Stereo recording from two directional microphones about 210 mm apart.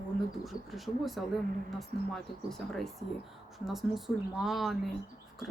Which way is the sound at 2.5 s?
Centre (ahead or behind).